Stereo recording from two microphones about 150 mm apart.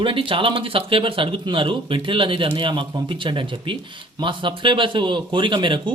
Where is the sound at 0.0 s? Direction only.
35° right (ahead or behind).